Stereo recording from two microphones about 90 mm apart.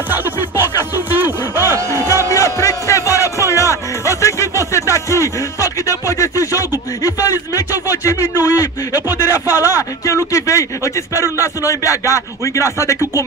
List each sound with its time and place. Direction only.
0.1 s music: 20° right (ahead or behind)
2.3 s music: 35° left (ahead or behind)
8.5 s music: 25° right (ahead or behind)
9.5 s music: 35° left (ahead or behind)